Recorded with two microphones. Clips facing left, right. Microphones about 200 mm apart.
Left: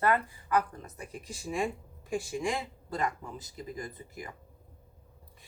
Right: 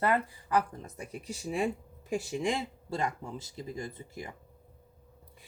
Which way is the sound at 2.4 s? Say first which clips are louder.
Right 1 dB; 25° right (ahead or behind).